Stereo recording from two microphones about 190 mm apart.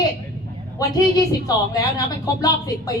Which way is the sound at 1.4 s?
20° left (ahead or behind).